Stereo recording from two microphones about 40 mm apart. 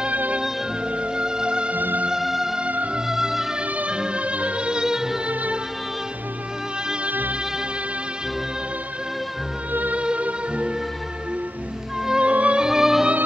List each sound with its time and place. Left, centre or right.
0.1 s music: right
0.9 s music: right
1.7 s music: right
2.0 s music: centre
3.7 s music: right
5.3 s music: right
7.1 s music: right
9.7 s music: right
9.9 s music: right
12.2 s music: right
12.5 s music: centre